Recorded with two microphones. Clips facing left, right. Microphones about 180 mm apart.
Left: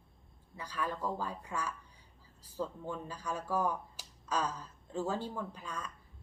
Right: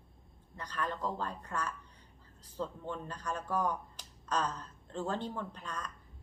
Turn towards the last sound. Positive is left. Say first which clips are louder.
# even
turn(degrees=10)  # may be behind; listen again after turning